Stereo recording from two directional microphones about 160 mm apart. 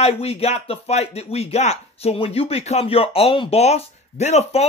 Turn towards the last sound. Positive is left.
turn(degrees=45)  # may be behind; listen again after turning